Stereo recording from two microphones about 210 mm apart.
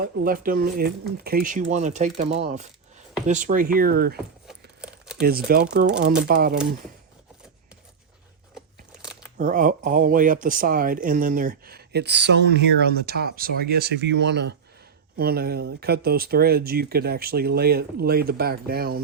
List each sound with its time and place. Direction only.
0.3 s speech: 40° right (ahead or behind)
4.4 s crumpling: 5° right (ahead or behind)
5.2 s speech: 45° right (ahead or behind)
8.5 s crumpling: centre (ahead or behind)
9.4 s speech: 40° right (ahead or behind)